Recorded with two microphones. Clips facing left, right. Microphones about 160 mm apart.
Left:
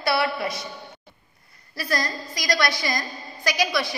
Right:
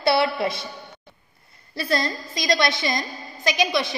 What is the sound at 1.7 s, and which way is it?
A woman's voice, 25° right (ahead or behind).